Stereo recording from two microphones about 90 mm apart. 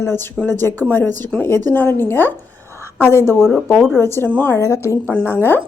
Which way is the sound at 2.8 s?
25° left (ahead or behind).